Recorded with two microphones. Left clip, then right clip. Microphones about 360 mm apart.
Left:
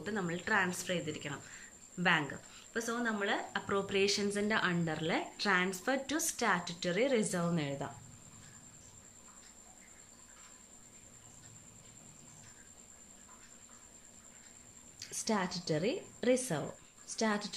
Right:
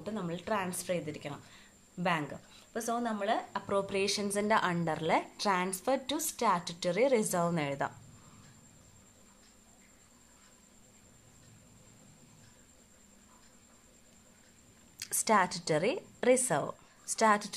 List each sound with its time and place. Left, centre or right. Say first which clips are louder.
0.0 s speech: left 1 dB; centre
2.7 s speech: right 2 dB; centre
15.0 s speech: right 8 dB; centre